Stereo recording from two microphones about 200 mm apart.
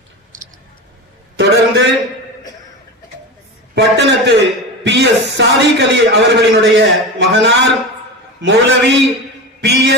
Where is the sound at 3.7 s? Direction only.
60° right (ahead or behind).